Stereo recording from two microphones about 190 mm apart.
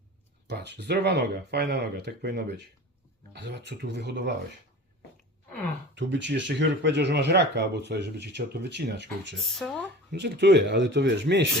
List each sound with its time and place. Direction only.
0.4 s speech: 60° right (ahead or behind)
6.0 s speech: 70° right (ahead or behind)
9.4 s speech: centre (ahead or behind)
10.1 s speech: 60° right (ahead or behind)